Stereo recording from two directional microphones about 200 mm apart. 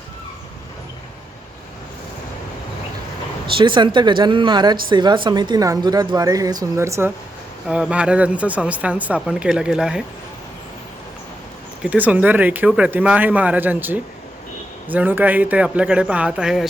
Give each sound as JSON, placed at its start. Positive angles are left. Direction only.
{"t": 3.5, "sound": "a woman's voice", "side_deg": -25}
{"t": 11.8, "sound": "speech", "side_deg": -5}